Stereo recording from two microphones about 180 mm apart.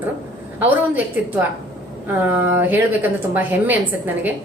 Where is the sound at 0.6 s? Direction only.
10° right (ahead or behind).